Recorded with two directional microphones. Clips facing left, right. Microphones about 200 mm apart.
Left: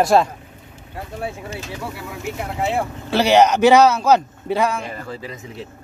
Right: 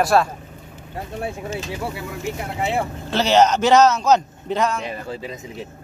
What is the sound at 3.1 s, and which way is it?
Speech, 10° left (ahead or behind).